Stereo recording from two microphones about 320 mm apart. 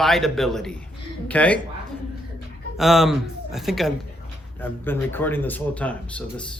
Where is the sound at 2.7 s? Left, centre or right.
Centre.